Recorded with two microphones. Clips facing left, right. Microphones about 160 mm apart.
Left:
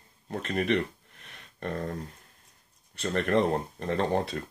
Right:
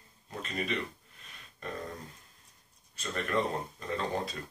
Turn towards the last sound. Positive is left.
turn(degrees=60)  # may be behind; listen again after turning